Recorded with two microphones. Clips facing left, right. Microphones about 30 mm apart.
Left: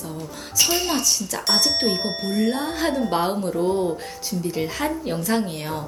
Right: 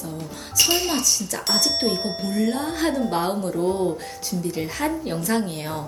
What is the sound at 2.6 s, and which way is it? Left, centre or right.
A woman's voice, centre.